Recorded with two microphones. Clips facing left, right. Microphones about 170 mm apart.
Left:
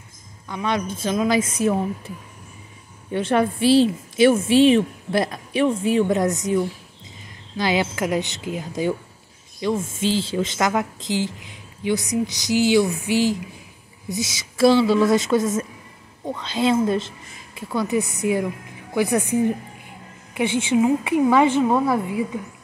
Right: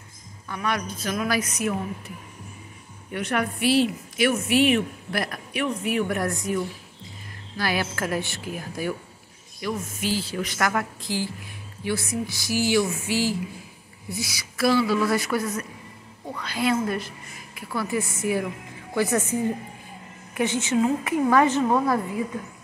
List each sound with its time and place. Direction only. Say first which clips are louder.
0.5 s a woman's voice: left 4 dB; 20° left (ahead or behind)